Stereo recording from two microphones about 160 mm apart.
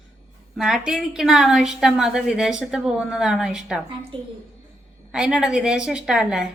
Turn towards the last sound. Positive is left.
turn(degrees=-5)  # may be behind; listen again after turning